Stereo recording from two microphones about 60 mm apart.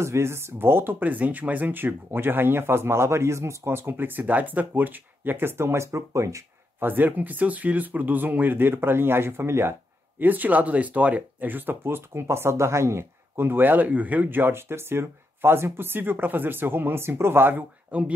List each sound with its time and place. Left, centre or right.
0.0 s speech: right
6.8 s speech: right
11.8 s speech: right
17.9 s speech: right